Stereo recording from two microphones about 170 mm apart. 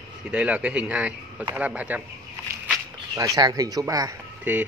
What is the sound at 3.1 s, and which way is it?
Speech, 20° right (ahead or behind).